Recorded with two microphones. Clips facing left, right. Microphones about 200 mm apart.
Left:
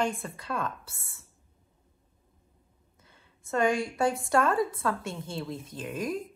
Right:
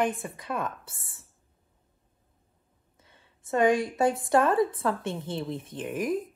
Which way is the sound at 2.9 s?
25° right (ahead or behind).